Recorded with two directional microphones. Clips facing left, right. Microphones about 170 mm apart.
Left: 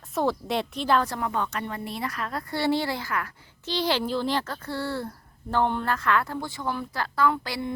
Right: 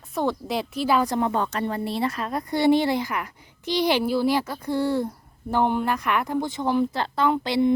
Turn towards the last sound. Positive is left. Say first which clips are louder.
# right 6 dB
turn(degrees=-20)  # may be behind; listen again after turning